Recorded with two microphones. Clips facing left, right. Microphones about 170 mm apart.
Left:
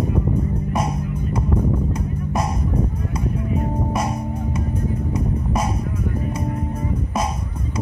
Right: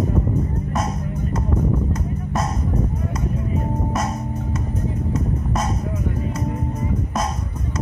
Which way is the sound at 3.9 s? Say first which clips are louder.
Left 1 dB; 10° left (ahead or behind).